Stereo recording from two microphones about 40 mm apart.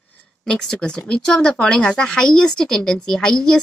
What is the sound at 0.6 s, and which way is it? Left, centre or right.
Speech, centre.